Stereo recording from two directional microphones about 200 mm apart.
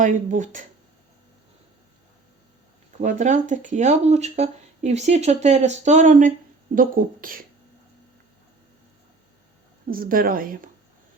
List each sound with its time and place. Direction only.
0.0 s speech: 40° right (ahead or behind)
3.0 s a woman's voice: 35° right (ahead or behind)
9.8 s a woman's voice: 45° right (ahead or behind)